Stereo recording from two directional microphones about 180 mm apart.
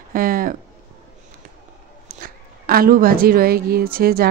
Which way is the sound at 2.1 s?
50° right (ahead or behind).